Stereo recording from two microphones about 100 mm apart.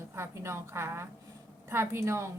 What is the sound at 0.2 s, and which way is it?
Speech, 25° right (ahead or behind).